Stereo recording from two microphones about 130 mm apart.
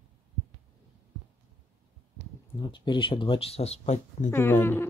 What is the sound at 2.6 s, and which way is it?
Speech, 40° left (ahead or behind).